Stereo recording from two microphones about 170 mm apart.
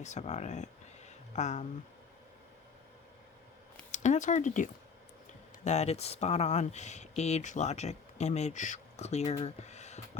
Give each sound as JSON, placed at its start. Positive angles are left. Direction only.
{"t": 0.0, "sound": "speech", "side_deg": 45}
{"t": 3.9, "sound": "speech", "side_deg": 45}